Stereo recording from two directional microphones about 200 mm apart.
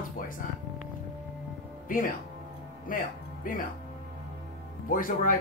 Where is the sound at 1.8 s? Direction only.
40° left (ahead or behind).